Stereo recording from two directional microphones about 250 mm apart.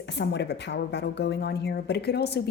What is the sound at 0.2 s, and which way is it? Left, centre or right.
A woman's voice, left.